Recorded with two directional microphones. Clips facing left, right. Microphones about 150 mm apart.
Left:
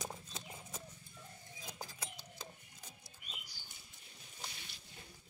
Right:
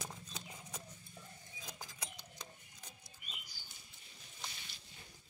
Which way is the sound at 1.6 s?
25° left (ahead or behind).